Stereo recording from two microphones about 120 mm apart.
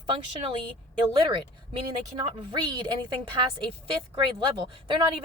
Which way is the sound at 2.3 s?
40° right (ahead or behind).